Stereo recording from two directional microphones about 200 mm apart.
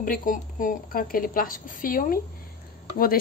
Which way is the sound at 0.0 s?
45° left (ahead or behind).